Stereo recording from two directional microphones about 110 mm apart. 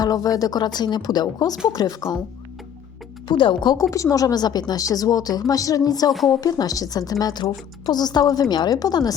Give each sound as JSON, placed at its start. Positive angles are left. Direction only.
{"t": 0.0, "sound": "a woman's voice", "side_deg": 35}
{"t": 3.2, "sound": "speech", "side_deg": 50}
{"t": 3.8, "sound": "a woman's voice", "side_deg": 30}